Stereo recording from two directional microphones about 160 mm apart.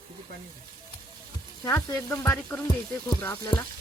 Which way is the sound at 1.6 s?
15° left (ahead or behind).